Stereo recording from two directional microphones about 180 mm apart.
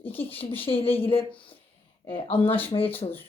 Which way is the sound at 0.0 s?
10° left (ahead or behind).